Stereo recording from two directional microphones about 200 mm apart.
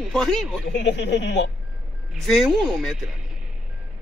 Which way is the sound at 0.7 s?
60° left (ahead or behind).